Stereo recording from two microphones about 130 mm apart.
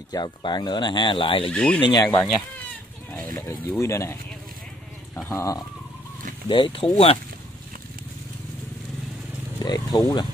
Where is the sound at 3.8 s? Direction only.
20° left (ahead or behind).